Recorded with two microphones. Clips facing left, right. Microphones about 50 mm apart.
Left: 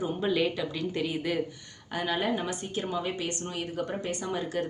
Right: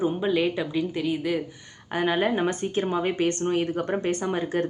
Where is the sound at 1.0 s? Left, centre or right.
Centre.